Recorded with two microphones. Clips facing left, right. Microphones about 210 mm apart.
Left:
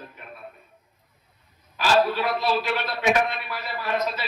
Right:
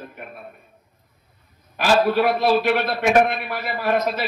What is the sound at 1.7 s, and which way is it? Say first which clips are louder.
A man's voice: right 4 dB; 55° right (ahead or behind).